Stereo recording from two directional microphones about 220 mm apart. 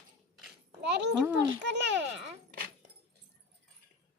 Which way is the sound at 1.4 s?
55° right (ahead or behind).